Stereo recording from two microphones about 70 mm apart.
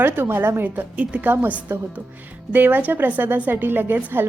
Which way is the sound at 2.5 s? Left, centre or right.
Right.